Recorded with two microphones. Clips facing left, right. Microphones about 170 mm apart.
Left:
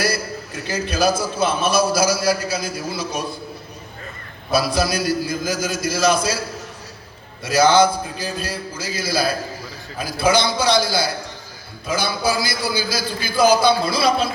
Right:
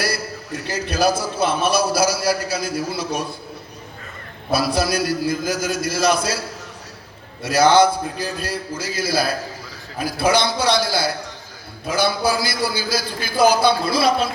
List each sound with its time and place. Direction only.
0.7 s a man's voice: 60° right (ahead or behind)
4.5 s a man's voice: 60° right (ahead or behind)
7.4 s a man's voice: 60° right (ahead or behind)